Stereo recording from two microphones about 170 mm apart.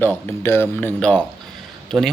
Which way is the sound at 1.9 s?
10° right (ahead or behind).